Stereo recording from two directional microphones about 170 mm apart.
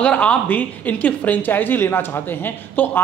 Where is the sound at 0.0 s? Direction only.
5° left (ahead or behind).